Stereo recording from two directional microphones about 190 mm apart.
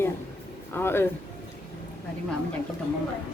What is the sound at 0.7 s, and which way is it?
Speech, 10° left (ahead or behind).